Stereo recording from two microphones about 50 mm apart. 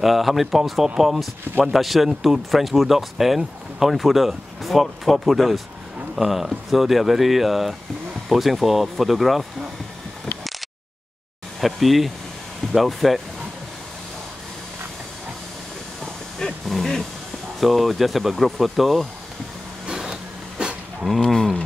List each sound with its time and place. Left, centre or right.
0.0 s speech: centre
11.6 s speech: centre
16.3 s a sound: centre
17.6 s speech: centre
19.9 s a sound: centre
21.2 s speech: centre